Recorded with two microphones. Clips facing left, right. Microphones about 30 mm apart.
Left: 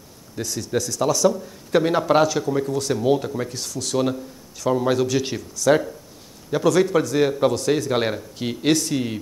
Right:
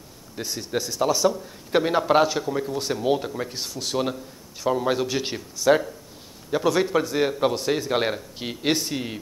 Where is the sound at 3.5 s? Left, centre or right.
Right.